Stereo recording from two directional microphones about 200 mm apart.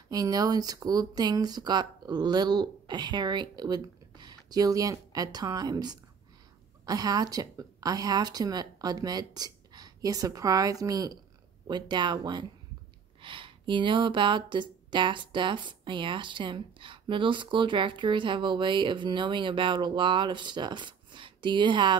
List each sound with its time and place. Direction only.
0.1 s speech: 20° right (ahead or behind)